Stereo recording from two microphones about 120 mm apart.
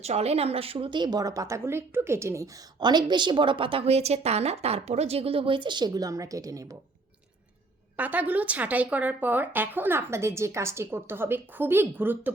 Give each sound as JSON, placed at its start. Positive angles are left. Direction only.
{"t": 0.0, "sound": "a woman's voice", "side_deg": -60}
{"t": 2.8, "sound": "a woman's voice", "side_deg": -40}
{"t": 7.9, "sound": "a woman's voice", "side_deg": -10}